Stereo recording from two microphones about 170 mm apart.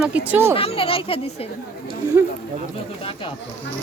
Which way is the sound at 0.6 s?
35° left (ahead or behind).